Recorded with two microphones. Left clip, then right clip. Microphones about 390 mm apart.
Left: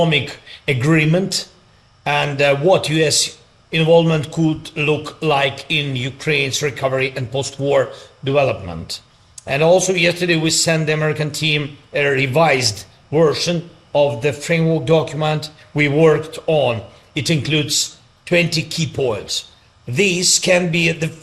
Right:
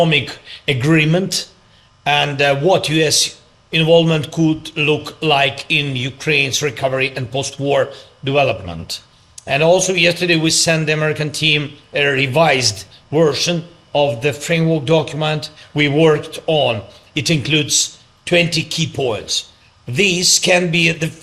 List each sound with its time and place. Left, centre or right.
0.0 s a man's voice: left